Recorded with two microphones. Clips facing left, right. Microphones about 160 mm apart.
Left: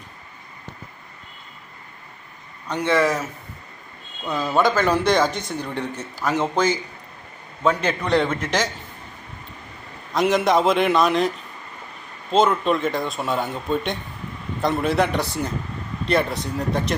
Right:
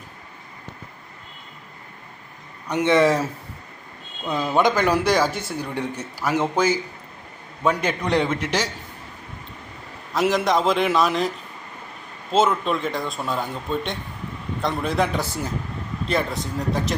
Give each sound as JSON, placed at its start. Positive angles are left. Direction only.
{"t": 2.6, "sound": "speech", "side_deg": -20}
{"t": 4.3, "sound": "speech", "side_deg": -20}
{"t": 10.2, "sound": "speech", "side_deg": 0}
{"t": 12.3, "sound": "speech", "side_deg": 0}